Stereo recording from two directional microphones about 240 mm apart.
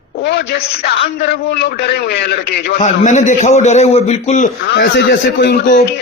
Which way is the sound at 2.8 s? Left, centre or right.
Left.